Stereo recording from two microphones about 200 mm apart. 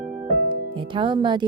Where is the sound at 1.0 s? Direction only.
25° right (ahead or behind).